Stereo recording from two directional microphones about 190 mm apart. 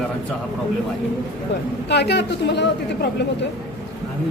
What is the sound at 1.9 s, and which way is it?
Speech, 65° left (ahead or behind).